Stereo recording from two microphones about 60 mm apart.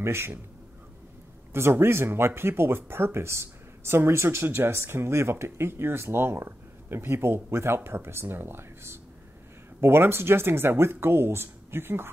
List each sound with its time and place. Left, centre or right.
0.0 s speech: right
1.5 s speech: right